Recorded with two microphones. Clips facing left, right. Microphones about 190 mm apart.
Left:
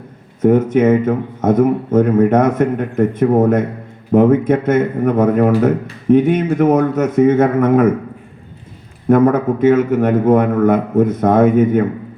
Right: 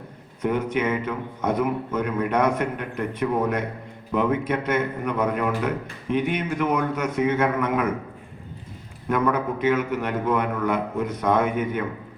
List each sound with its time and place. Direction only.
0.4 s speech: 50° left (ahead or behind)
9.0 s speech: 50° left (ahead or behind)